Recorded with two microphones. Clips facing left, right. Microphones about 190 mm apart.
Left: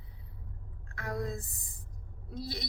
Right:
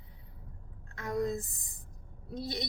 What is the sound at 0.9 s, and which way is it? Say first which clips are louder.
Speech: right 4 dB; 20° right (ahead or behind).